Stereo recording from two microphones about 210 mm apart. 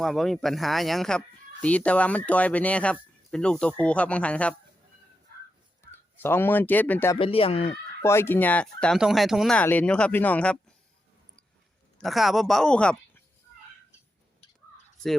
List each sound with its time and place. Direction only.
0.0 s speech: centre (ahead or behind)
5.8 s a man's voice: 10° left (ahead or behind)
7.2 s speech: 25° left (ahead or behind)
8.0 s speech: 10° left (ahead or behind)
12.0 s speech: centre (ahead or behind)